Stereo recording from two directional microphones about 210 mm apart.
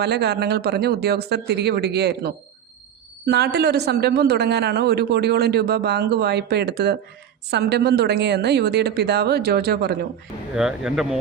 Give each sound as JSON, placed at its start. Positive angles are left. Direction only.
{"t": 0.0, "sound": "a man's voice", "side_deg": -50}
{"t": 10.5, "sound": "speech", "side_deg": -5}